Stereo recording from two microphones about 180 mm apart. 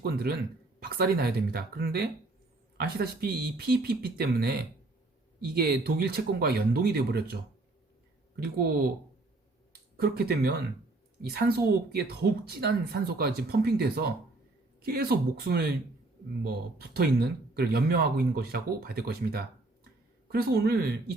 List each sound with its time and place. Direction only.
0.0 s speech: 60° right (ahead or behind)
5.5 s speech: 60° right (ahead or behind)
8.4 s speech: 60° right (ahead or behind)
10.0 s speech: 60° right (ahead or behind)